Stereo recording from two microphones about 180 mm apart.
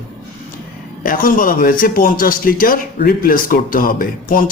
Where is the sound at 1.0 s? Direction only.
50° left (ahead or behind).